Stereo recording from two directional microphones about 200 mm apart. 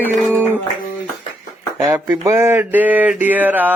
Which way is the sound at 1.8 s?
10° right (ahead or behind).